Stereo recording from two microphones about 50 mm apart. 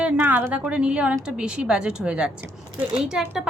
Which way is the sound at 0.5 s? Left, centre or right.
Right.